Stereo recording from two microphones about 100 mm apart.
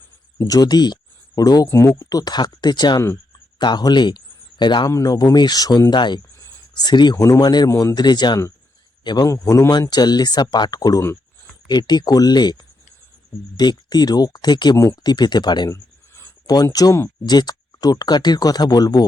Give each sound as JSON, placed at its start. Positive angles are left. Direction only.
{"t": 0.3, "sound": "speech", "side_deg": 35}
{"t": 1.6, "sound": "speech", "side_deg": 30}
{"t": 4.9, "sound": "speech", "side_deg": 35}
{"t": 7.7, "sound": "speech", "side_deg": 30}
{"t": 7.9, "sound": "speech", "side_deg": 45}
{"t": 13.6, "sound": "speech", "side_deg": 45}
{"t": 15.7, "sound": "a sound", "side_deg": 25}
{"t": 16.8, "sound": "speech", "side_deg": 35}